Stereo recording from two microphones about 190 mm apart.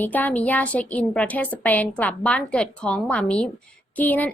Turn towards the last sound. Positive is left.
turn(degrees=10)  # may be behind; listen again after turning